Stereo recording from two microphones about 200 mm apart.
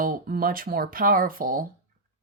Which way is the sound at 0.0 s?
45° right (ahead or behind).